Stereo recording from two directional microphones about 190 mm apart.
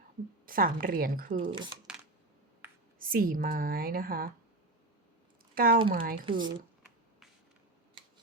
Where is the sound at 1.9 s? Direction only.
5° right (ahead or behind).